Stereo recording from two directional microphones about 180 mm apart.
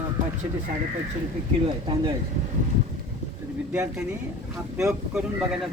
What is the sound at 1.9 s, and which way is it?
Speech, 30° right (ahead or behind).